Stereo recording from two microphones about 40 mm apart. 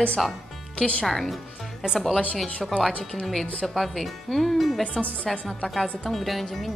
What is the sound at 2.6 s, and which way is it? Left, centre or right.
A woman's voice, centre.